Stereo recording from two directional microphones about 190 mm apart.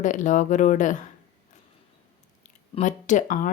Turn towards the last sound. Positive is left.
turn(degrees=45)  # may be behind; listen again after turning